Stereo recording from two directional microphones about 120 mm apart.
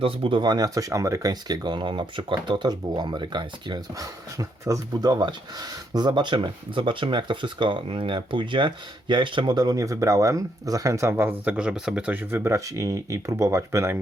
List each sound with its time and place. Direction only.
0.0 s speech: 50° right (ahead or behind); by 14.0 s 20° right (ahead or behind)